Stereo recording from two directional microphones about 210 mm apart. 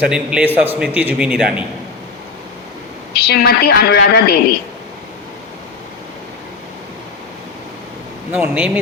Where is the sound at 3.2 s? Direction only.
50° left (ahead or behind).